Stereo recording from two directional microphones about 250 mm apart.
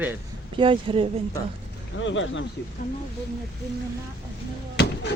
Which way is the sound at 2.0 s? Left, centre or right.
Left.